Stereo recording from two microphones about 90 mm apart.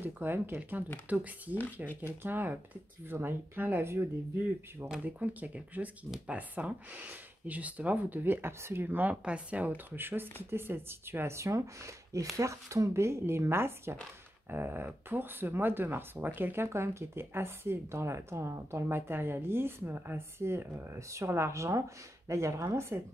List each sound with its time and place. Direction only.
0.0 s speech: 25° right (ahead or behind)
5.0 s speech: 15° right (ahead or behind)